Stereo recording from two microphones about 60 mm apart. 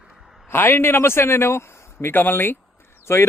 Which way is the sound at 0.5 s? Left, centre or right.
Left.